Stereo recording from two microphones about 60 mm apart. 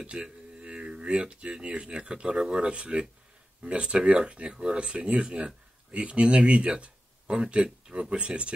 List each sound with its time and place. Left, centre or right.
0.0 s speech: centre